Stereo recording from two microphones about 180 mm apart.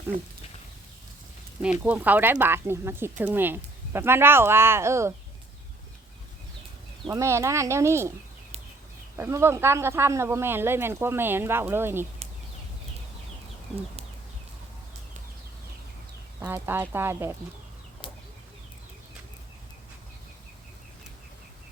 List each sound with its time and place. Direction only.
1.8 s speech: 10° right (ahead or behind)
7.1 s speech: 15° right (ahead or behind)
9.1 s speech: 15° right (ahead or behind)
16.4 s speech: 10° right (ahead or behind)